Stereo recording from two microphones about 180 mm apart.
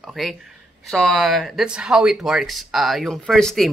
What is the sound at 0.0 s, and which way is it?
Speech, centre (ahead or behind).